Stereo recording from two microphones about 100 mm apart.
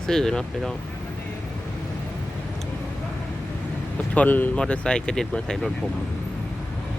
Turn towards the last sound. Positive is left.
turn(degrees=5)  # may be behind; listen again after turning